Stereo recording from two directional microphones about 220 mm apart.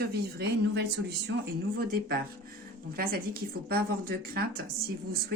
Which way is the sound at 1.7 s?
45° right (ahead or behind).